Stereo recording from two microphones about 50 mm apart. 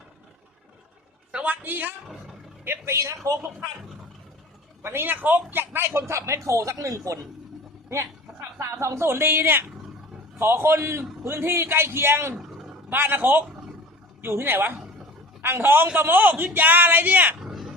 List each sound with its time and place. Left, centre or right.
1.5 s a man's voice: right
2.6 s speech: right
4.8 s speech: right
9.0 s a woman's voice: right
10.3 s a man's voice: right
12.3 s roar: centre
12.9 s a woman's voice: right
17.4 s a sound: centre